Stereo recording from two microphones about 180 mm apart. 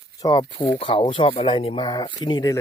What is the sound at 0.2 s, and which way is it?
Speech, 25° left (ahead or behind).